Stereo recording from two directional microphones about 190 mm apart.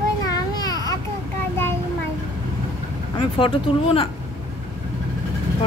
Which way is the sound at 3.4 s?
25° left (ahead or behind).